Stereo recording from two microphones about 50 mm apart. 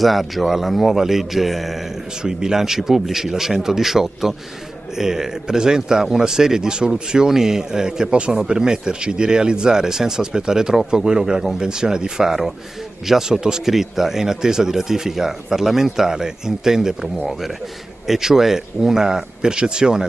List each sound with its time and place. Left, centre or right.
0.0 s a man's voice: centre